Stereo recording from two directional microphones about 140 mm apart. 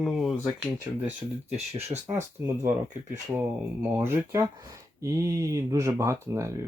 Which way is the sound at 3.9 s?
15° right (ahead or behind).